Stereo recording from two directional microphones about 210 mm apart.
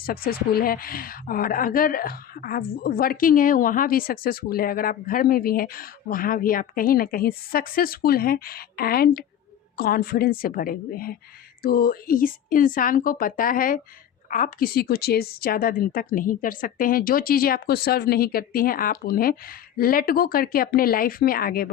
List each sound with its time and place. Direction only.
0.0 s speech: 45° left (ahead or behind)